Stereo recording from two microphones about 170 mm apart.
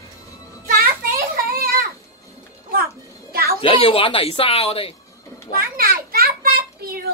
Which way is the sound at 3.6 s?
30° left (ahead or behind).